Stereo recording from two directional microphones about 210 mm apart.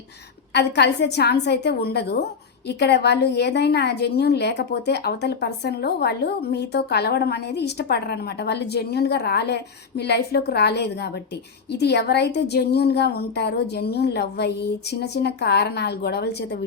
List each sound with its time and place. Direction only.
0.5 s a woman's voice: 50° left (ahead or behind)